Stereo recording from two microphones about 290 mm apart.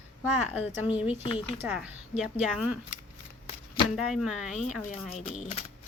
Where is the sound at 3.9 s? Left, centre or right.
Centre.